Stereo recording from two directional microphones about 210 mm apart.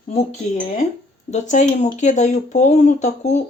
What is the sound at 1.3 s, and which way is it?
Speech, 35° left (ahead or behind).